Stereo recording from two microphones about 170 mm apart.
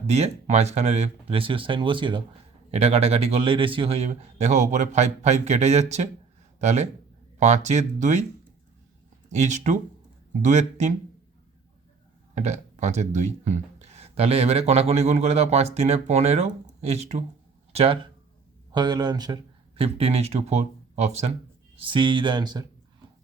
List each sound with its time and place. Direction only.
0.1 s speech: 40° right (ahead or behind)
9.3 s speech: 45° right (ahead or behind)
12.3 s speech: 40° right (ahead or behind); by 22.6 s 25° right (ahead or behind)